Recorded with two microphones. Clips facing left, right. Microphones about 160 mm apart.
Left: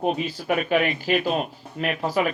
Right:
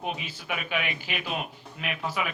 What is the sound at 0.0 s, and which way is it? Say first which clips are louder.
Speech: left 10 dB; 40° left (ahead or behind).